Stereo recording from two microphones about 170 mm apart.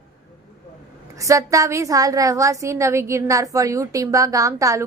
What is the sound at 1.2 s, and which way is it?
A woman's voice, 20° right (ahead or behind).